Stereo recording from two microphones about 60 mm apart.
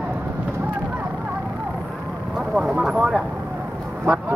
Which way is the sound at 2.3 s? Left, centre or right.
Centre.